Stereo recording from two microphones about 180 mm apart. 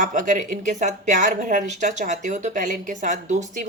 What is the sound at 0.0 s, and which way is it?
Speech, 45° right (ahead or behind).